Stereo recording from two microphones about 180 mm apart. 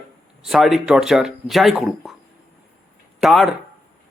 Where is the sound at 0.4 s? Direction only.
Centre (ahead or behind).